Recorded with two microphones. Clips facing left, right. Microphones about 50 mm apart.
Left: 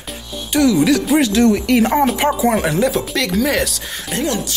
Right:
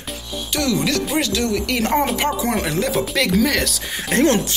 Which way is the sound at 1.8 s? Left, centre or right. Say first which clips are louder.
Left 4 dB; centre.